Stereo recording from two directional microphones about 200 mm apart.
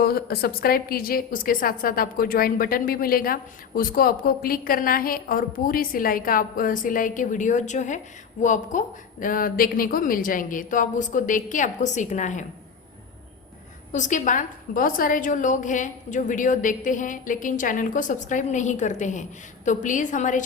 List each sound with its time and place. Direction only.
0.0 s a woman's voice: 50° left (ahead or behind)
13.9 s a woman's voice: 40° left (ahead or behind)